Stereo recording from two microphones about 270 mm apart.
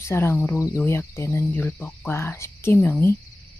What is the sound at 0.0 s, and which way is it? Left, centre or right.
Speech, centre.